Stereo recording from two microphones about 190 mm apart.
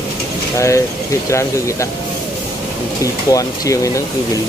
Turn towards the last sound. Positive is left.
turn(degrees=15)  # may be behind; listen again after turning